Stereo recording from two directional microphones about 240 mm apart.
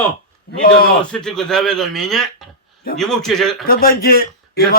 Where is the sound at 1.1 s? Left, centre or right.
Centre.